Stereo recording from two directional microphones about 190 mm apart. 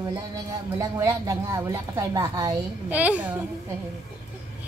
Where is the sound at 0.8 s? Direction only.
20° right (ahead or behind).